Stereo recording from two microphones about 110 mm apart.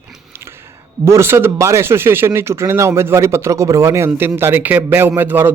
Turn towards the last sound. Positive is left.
turn(degrees=-20)  # may be behind; listen again after turning